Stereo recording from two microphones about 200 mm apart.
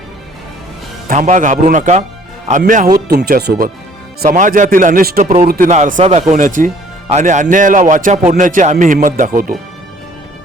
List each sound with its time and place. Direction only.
1.0 s a man's voice: 40° right (ahead or behind)
3.1 s a man's voice: 50° right (ahead or behind)